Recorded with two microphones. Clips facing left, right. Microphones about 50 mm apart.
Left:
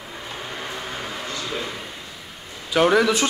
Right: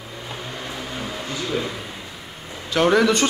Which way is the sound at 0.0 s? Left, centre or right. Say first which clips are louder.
Even; centre.